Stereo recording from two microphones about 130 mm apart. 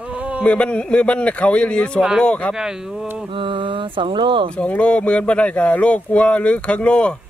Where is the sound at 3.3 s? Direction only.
40° right (ahead or behind).